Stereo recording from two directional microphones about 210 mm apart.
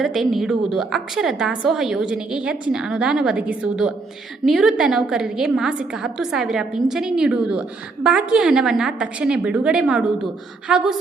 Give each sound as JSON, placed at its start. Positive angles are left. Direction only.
{"t": 0.0, "sound": "a woman's voice", "side_deg": 0}